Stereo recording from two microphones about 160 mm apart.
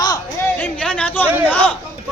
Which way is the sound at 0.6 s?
5° left (ahead or behind).